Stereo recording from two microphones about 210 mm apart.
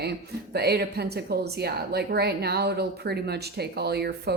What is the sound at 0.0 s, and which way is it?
Speech, 50° right (ahead or behind).